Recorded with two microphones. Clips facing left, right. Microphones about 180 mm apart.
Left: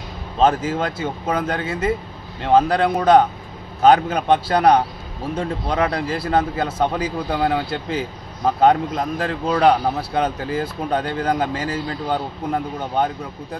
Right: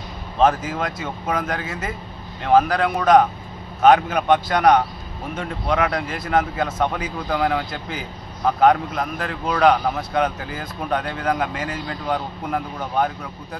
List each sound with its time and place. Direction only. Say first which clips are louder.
0.4 s a man's voice: left 1 dB; 30° left (ahead or behind)